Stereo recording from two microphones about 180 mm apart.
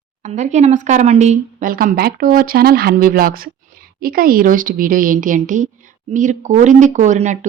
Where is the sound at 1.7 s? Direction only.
55° right (ahead or behind).